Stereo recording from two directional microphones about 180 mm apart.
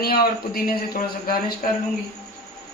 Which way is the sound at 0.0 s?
55° left (ahead or behind).